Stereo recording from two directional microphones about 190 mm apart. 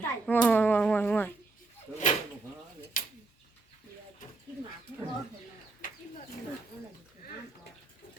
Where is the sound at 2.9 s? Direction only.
45° left (ahead or behind).